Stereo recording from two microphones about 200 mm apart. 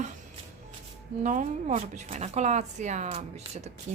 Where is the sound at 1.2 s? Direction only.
40° right (ahead or behind).